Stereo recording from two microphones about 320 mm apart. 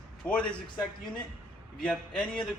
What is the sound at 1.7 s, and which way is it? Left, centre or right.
Speech, centre.